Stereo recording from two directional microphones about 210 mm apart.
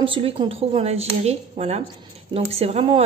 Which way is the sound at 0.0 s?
25° right (ahead or behind).